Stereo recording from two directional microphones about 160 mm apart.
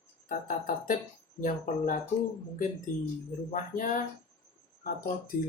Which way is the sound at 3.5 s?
55° left (ahead or behind).